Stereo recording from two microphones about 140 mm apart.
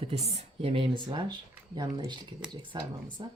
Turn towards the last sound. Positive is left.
turn(degrees=-35)  # may be behind; listen again after turning